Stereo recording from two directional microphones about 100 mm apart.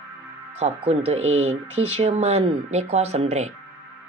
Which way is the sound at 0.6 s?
90° right.